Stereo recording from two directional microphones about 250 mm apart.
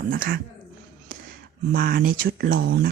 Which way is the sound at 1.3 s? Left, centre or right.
Right.